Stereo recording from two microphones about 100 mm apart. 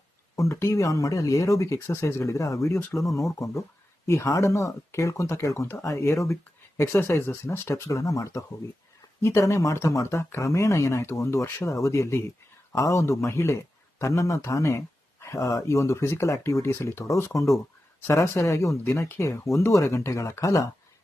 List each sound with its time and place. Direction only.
0.3 s speech: 30° left (ahead or behind)